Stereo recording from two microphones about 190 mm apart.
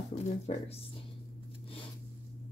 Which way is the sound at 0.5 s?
35° left (ahead or behind).